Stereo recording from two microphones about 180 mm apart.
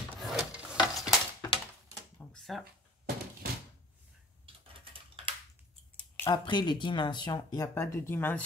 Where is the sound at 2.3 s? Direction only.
Centre (ahead or behind).